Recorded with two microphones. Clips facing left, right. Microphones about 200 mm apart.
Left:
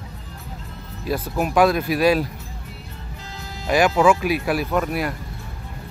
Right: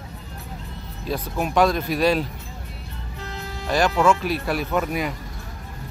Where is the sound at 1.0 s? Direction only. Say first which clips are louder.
Left 3 dB; 5° left (ahead or behind).